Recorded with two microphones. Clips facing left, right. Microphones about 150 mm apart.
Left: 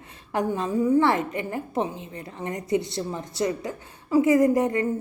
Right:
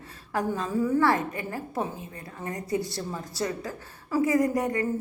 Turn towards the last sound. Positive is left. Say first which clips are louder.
# left 4 dB
turn(degrees=25)  # may be behind; listen again after turning